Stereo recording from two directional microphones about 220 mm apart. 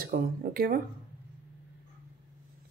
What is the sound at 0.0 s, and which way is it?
Speech, 40° right (ahead or behind).